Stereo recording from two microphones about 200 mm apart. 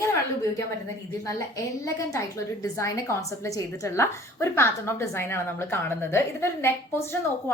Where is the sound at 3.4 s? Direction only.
15° left (ahead or behind).